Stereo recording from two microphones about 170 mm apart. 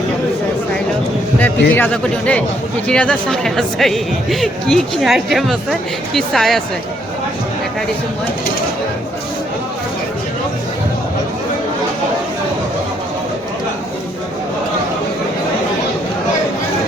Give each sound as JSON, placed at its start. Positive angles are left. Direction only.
{"t": 1.4, "sound": "speech", "side_deg": 10}